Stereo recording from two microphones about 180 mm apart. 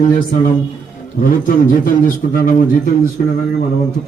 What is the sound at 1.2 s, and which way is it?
A man's voice, 50° left (ahead or behind).